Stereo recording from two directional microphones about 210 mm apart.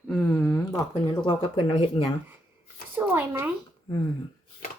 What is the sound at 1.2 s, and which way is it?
Speech, 25° left (ahead or behind).